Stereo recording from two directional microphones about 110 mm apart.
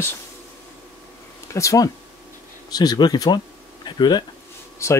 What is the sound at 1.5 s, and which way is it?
Speech, 30° left (ahead or behind).